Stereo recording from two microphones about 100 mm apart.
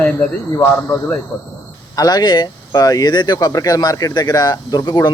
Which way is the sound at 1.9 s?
40° left (ahead or behind).